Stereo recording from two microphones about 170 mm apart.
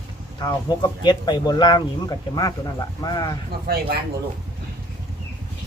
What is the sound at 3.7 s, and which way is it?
Speech, 65° right (ahead or behind).